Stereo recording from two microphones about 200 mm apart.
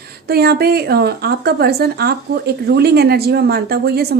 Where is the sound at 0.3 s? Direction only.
50° right (ahead or behind).